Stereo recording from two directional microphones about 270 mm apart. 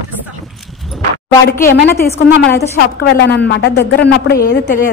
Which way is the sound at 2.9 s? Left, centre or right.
Left.